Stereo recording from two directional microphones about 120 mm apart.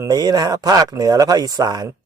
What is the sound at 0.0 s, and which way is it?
Speech, 35° right (ahead or behind).